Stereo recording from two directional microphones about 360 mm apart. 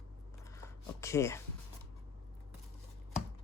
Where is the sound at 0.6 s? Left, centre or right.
Centre.